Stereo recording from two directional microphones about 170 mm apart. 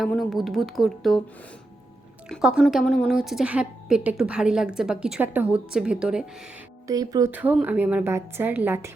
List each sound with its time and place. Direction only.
0.0 s a woman's voice: centre (ahead or behind)
2.3 s a woman's voice: 5° right (ahead or behind)
6.8 s speech: 20° right (ahead or behind)
7.3 s a woman's voice: 10° right (ahead or behind)